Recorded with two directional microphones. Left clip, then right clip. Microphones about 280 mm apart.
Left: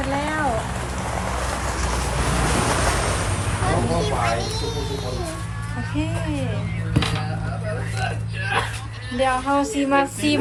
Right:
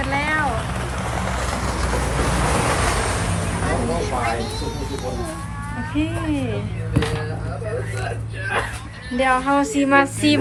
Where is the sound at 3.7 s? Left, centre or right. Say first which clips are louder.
Left 1 dB; centre.